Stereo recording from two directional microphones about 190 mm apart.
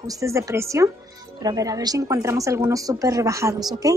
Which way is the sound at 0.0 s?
15° right (ahead or behind).